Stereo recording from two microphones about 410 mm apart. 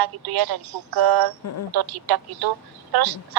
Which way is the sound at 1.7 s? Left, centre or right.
Right.